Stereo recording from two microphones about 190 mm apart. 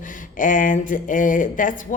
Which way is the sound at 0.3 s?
45° left (ahead or behind).